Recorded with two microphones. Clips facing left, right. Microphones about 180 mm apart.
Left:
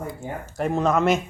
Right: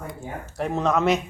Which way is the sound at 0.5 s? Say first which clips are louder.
Left 2 dB; centre (ahead or behind).